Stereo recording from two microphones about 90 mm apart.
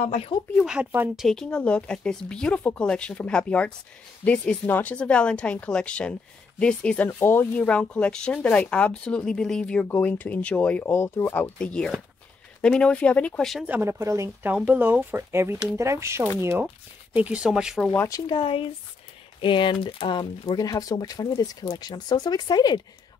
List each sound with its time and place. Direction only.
0.3 s speech: 75° left (ahead or behind)
1.1 s speech: 5° left (ahead or behind)
7.1 s speech: 25° left (ahead or behind)
7.6 s speech: 10° left (ahead or behind)
9.8 s speech: 20° left (ahead or behind)
10.9 s speech: 30° left (ahead or behind)
11.5 s speech: 10° left (ahead or behind)
13.4 s speech: centre (ahead or behind)
13.7 s speech: 25° right (ahead or behind)
14.7 s speech: 20° right (ahead or behind)
17.1 s speech: 15° right (ahead or behind)
17.5 s speech: 5° right (ahead or behind)
18.4 s speech: 90° left
19.4 s speech: 60° left (ahead or behind)